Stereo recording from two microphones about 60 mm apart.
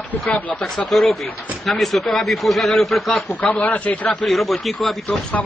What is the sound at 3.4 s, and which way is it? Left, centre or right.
Speech, left.